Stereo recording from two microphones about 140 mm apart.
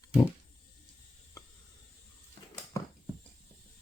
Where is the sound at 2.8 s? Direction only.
20° left (ahead or behind).